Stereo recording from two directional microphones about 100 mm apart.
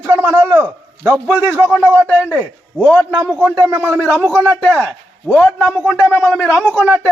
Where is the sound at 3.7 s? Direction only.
20° right (ahead or behind).